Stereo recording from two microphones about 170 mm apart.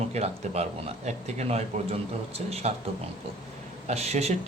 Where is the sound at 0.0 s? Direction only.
40° right (ahead or behind).